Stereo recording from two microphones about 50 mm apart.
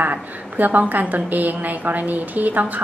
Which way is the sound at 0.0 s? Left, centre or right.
Right.